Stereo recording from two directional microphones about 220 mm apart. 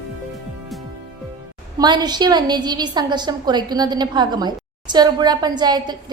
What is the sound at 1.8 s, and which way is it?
A woman's voice, 20° right (ahead or behind).